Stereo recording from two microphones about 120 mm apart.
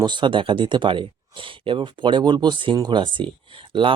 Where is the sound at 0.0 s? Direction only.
40° right (ahead or behind).